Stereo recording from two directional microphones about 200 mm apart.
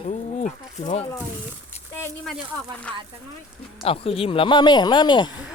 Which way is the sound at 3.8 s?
30° left (ahead or behind).